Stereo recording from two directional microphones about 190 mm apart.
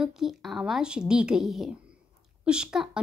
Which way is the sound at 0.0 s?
Centre (ahead or behind).